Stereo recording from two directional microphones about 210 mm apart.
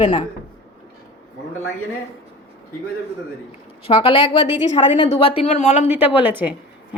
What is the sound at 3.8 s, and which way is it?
A man's voice, 25° left (ahead or behind).